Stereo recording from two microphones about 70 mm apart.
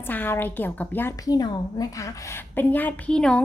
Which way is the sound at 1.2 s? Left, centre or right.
Left.